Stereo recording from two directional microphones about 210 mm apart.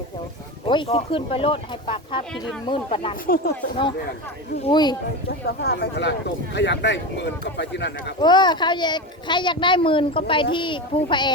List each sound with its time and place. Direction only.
0.6 s a child's voice: 25° left (ahead or behind)
3.2 s speech: 45° left (ahead or behind)
4.6 s a child's voice: 20° left (ahead or behind)
5.6 s speech: 50° left (ahead or behind)
8.2 s a child's voice: 20° left (ahead or behind)